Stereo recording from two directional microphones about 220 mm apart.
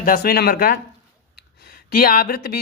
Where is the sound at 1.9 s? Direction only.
40° left (ahead or behind).